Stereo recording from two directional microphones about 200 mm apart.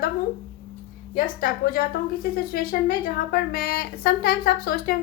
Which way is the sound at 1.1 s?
50° left (ahead or behind).